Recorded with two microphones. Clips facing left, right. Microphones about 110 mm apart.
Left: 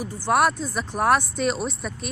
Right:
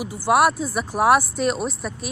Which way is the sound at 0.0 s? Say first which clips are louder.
Right 3 dB; 10° right (ahead or behind).